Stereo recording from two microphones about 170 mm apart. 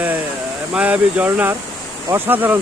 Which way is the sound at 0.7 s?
5° right (ahead or behind).